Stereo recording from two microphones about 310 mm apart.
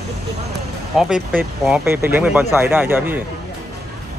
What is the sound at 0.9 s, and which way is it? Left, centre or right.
Speech, centre.